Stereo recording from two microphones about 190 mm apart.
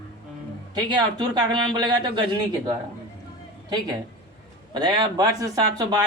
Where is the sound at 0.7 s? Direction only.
20° right (ahead or behind).